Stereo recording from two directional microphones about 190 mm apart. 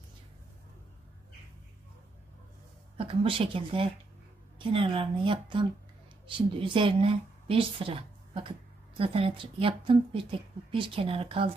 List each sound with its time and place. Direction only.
3.0 s speech: 30° right (ahead or behind)